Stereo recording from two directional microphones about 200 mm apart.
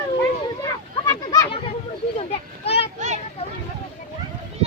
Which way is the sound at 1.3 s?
25° left (ahead or behind).